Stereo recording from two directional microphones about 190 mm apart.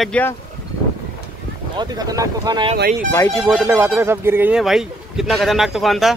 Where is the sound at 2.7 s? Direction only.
55° right (ahead or behind).